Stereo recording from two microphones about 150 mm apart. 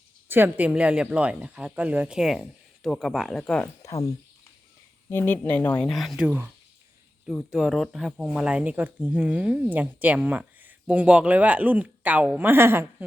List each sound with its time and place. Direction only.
0.3 s speech: 15° right (ahead or behind); by 3.7 s 5° left (ahead or behind)
3.8 s speech: 20° left (ahead or behind)
5.9 s speech: centre (ahead or behind)